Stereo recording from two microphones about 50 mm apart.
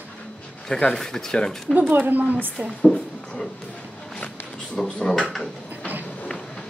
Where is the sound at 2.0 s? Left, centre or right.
Right.